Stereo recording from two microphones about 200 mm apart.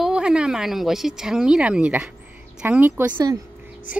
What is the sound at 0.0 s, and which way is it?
A woman's voice, 5° right (ahead or behind).